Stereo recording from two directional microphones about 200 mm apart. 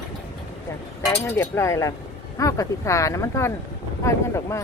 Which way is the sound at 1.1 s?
15° left (ahead or behind).